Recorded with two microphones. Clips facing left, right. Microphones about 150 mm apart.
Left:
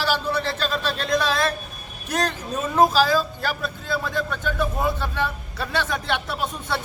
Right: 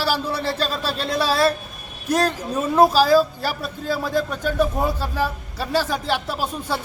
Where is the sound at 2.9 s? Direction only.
35° right (ahead or behind).